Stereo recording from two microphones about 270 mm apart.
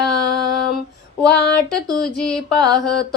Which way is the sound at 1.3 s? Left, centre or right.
Left.